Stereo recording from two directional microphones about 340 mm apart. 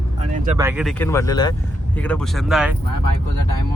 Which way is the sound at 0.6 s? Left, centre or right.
Centre.